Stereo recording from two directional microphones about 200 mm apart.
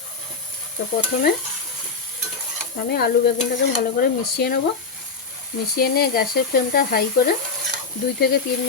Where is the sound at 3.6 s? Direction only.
55° left (ahead or behind).